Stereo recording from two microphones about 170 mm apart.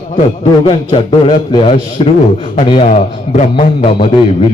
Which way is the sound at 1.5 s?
30° left (ahead or behind).